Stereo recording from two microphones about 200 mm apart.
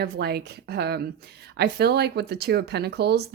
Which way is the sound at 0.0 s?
50° right (ahead or behind).